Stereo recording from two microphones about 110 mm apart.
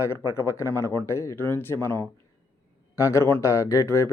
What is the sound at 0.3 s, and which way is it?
A man's voice, 25° left (ahead or behind).